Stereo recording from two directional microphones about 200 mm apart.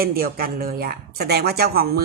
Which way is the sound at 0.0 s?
50° right (ahead or behind).